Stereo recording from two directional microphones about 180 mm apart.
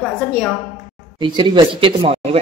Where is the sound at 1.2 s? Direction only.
25° right (ahead or behind).